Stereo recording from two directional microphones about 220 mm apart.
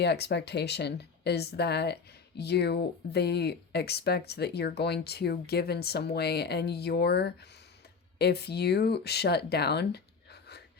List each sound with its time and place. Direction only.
0.0 s speech: 50° left (ahead or behind)